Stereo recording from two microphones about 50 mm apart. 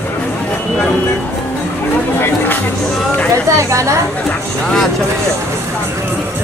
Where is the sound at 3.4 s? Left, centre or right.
Right.